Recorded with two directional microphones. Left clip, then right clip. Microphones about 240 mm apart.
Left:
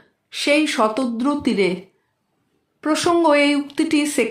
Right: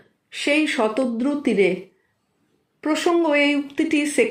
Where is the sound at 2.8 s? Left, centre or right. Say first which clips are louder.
Left 3 dB; centre.